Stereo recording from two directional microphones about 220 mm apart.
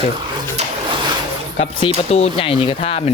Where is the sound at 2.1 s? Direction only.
30° left (ahead or behind).